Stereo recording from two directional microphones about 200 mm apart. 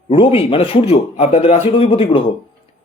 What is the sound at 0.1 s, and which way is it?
Speech, 30° left (ahead or behind).